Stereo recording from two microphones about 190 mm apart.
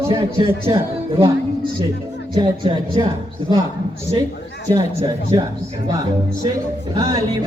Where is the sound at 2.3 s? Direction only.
25° right (ahead or behind).